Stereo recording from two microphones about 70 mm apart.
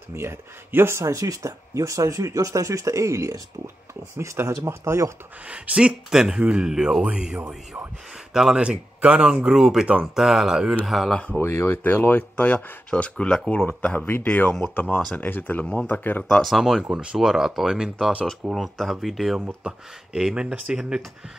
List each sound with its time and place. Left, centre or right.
0.1 s speech: right
5.5 s speech: centre
8.3 s speech: centre
8.5 s speech: centre
11.1 s speech: centre
11.3 s speech: left
15.6 s speech: centre
15.9 s speech: left
16.3 s speech: centre
19.4 s speech: centre